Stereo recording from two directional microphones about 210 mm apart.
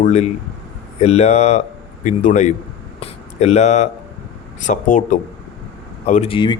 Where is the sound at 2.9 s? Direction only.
30° left (ahead or behind).